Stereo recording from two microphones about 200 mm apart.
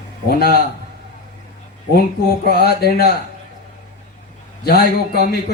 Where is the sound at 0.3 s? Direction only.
50° left (ahead or behind).